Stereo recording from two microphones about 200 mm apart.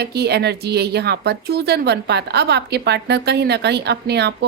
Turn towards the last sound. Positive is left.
turn(degrees=-55)  # may be behind; listen again after turning